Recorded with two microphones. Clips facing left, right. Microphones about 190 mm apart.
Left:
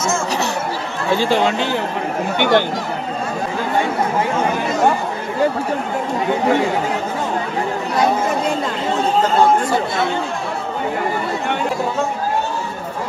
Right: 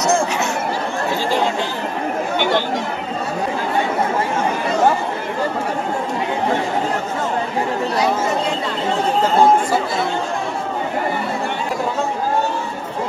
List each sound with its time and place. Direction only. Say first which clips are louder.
2.3 s speech: left 4 dB; 55° left (ahead or behind)